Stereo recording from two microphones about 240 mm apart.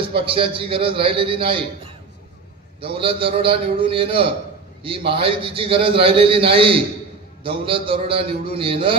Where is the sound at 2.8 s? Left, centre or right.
Right.